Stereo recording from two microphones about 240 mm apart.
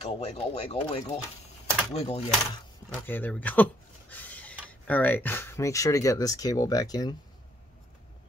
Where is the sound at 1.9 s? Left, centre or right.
Left.